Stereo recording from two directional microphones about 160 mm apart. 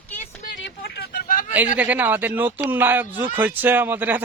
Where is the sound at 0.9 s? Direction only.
80° left; by 1.5 s 60° left (ahead or behind).